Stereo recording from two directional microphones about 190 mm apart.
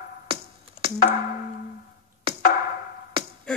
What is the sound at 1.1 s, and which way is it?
Wood block, 40° left (ahead or behind).